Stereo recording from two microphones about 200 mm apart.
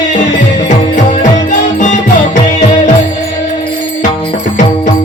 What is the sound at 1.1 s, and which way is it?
Music, 40° left (ahead or behind).